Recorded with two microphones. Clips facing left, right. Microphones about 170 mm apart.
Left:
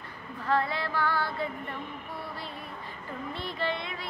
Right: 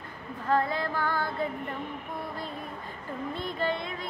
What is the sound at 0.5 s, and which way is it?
Female singing, 45° right (ahead or behind).